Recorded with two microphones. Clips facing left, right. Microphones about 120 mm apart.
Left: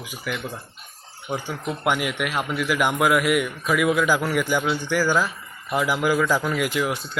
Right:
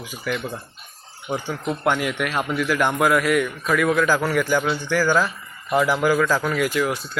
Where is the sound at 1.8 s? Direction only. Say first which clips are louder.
Right 1 dB; 10° left (ahead or behind).